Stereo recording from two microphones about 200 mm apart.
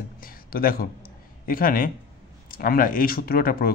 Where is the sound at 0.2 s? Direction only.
45° left (ahead or behind).